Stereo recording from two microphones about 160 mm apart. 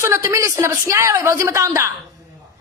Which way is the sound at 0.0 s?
15° right (ahead or behind).